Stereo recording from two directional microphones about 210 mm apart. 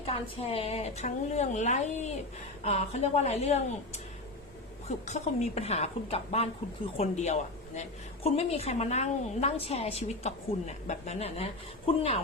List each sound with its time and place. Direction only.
0.0 s a woman's voice: 25° left (ahead or behind)